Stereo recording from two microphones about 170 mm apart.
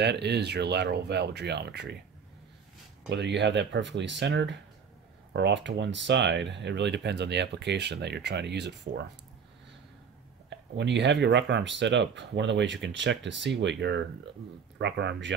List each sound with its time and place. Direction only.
0.0 s speech: 85° right
3.1 s speech: 90° right
10.8 s speech: 90° right